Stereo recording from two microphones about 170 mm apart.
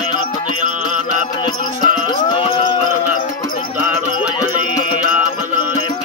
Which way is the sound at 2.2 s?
30° left (ahead or behind).